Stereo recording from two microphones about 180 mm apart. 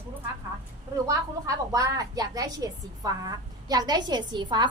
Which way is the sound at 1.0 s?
20° right (ahead or behind).